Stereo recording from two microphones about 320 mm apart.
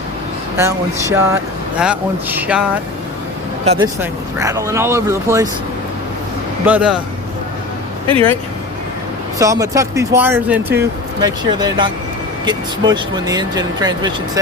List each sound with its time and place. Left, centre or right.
1.1 s a man's voice: centre
3.6 s speech: centre
6.7 s a man's voice: centre
8.0 s speech: centre
9.4 s speech: centre